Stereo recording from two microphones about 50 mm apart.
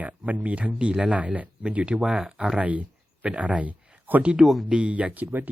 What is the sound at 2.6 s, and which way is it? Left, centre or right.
Speech, right.